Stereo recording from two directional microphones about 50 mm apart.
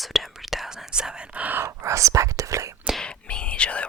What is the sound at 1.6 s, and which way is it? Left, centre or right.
Whispering, right.